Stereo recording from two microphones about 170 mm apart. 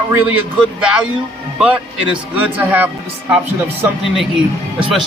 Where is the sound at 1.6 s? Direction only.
5° right (ahead or behind).